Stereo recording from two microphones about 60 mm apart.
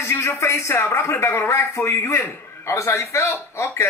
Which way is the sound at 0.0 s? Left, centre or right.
Left.